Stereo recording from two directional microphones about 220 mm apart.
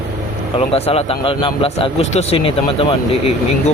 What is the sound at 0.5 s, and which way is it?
Speech, 25° left (ahead or behind).